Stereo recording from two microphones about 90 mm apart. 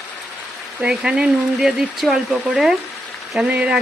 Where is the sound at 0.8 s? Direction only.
10° right (ahead or behind).